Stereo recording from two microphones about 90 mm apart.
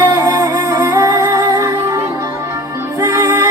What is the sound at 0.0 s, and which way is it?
Music, 30° right (ahead or behind).